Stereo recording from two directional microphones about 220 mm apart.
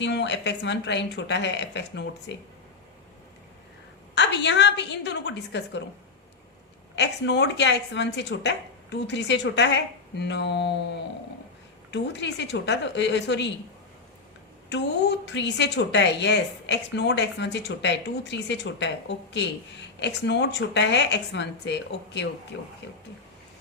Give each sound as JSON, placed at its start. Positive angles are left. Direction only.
{"t": 0.0, "sound": "a woman's voice", "side_deg": 55}
{"t": 4.1, "sound": "a woman's voice", "side_deg": 50}
{"t": 6.9, "sound": "a woman's voice", "side_deg": 50}
{"t": 15.3, "sound": "a woman's voice", "side_deg": 55}